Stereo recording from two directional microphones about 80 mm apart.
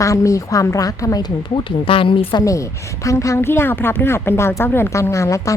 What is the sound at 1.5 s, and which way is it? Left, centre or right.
Speech, left.